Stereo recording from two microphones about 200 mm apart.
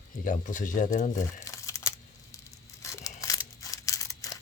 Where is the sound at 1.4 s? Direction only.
15° left (ahead or behind).